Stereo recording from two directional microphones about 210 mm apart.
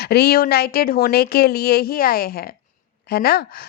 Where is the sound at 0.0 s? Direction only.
50° left (ahead or behind).